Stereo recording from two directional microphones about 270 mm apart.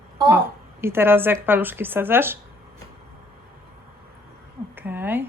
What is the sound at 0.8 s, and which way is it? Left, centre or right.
A woman's voice, centre.